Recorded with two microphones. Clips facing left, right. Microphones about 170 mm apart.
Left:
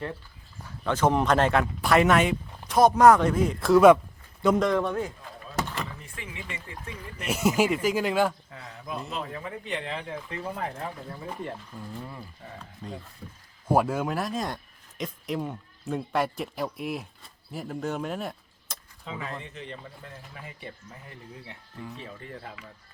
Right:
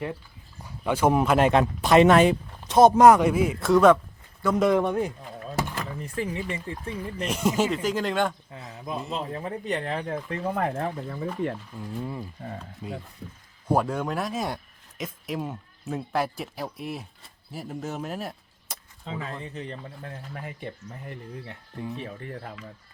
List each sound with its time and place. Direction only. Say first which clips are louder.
0.6 s speech: right 1 dB; 10° right (ahead or behind)
4.8 s door: right 3 dB; 20° right (ahead or behind)
6.0 s speech: right 11 dB; 40° right (ahead or behind)
7.3 s speech: left 1 dB; 5° left (ahead or behind)
8.4 s speech: right 3 dB; 20° right (ahead or behind)
9.1 s speech: right 3 dB; 30° right (ahead or behind); by 10.8 s 55° right (ahead or behind)
11.9 s speech: right 6 dB; 15° right (ahead or behind)
13.7 s speech: left 1 dB; 5° left (ahead or behind)
19.0 s speech: right 2 dB; 35° right (ahead or behind)